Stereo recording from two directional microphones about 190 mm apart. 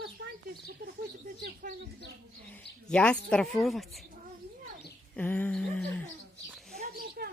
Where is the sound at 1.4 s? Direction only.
50° right (ahead or behind).